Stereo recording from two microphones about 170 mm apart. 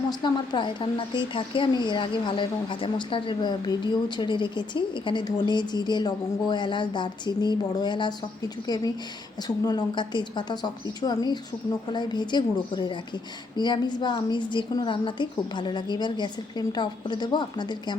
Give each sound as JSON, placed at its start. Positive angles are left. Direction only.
{"t": 0.1, "sound": "a woman's voice", "side_deg": 30}